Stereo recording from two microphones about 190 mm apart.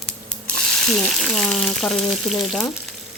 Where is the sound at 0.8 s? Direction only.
Centre (ahead or behind).